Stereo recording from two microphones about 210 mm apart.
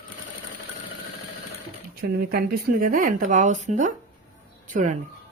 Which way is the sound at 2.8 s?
40° right (ahead or behind).